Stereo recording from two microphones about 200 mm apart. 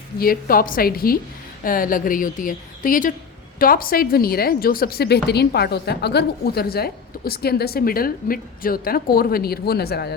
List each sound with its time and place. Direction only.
0.2 s a woman's voice: 45° left (ahead or behind)